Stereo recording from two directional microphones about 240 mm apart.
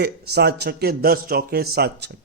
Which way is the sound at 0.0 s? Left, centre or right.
Right.